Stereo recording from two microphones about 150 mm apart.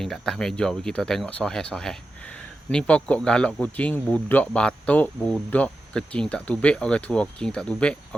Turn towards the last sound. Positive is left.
turn(degrees=5)  # may be behind; listen again after turning